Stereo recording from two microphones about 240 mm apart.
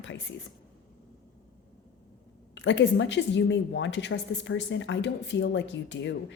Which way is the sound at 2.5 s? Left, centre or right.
Left.